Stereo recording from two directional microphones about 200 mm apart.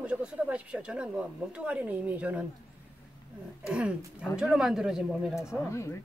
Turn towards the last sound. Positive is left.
turn(degrees=15)  # may be behind; listen again after turning